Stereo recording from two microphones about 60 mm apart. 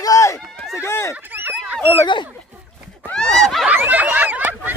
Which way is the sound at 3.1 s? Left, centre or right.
Centre.